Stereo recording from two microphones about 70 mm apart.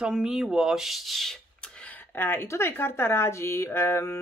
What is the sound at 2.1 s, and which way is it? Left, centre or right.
Speech, left.